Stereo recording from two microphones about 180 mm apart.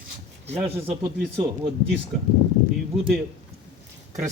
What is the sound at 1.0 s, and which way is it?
Speech, 15° right (ahead or behind).